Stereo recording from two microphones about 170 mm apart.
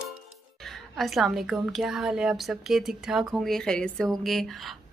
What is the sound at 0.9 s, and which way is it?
A woman's voice, centre (ahead or behind).